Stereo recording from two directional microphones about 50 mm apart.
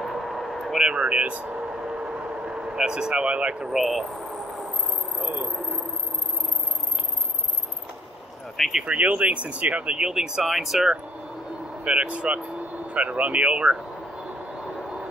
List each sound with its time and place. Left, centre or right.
0.0 s vehicle: centre
0.7 s speech: centre
3.7 s speech: centre
5.2 s speech: right
5.5 s a sound: centre
8.5 s speech: centre
8.8 s speech: right; by 10.9 s centre
11.8 s speech: right